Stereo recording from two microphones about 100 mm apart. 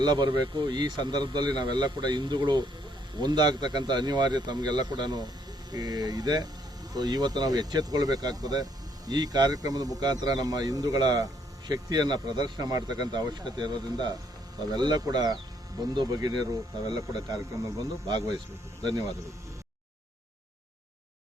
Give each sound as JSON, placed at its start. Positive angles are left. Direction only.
{"t": 0.0, "sound": "speech", "side_deg": -50}